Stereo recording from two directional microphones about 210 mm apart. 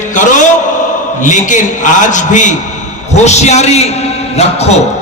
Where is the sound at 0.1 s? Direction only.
35° left (ahead or behind).